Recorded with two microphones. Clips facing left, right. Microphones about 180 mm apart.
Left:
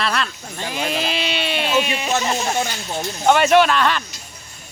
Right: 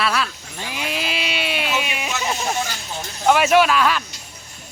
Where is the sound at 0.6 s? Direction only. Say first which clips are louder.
Left 4 dB; 45° left (ahead or behind).